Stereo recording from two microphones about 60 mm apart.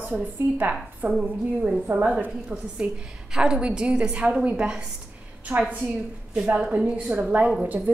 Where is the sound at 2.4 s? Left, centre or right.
Centre.